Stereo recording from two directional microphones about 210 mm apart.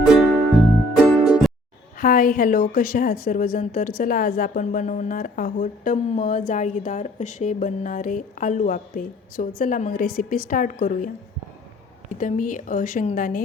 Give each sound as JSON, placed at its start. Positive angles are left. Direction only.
{"t": 0.9, "sound": "music", "side_deg": -5}
{"t": 2.0, "sound": "a woman's voice", "side_deg": 40}
{"t": 12.1, "sound": "a woman's voice", "side_deg": 40}